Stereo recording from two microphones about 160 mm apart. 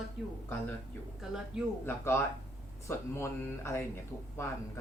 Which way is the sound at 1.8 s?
15° left (ahead or behind).